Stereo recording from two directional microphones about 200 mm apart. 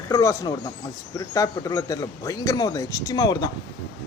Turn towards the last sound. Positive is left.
turn(degrees=20)  # may be behind; listen again after turning